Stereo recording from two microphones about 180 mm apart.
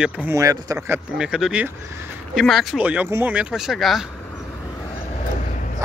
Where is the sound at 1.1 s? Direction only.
5° right (ahead or behind).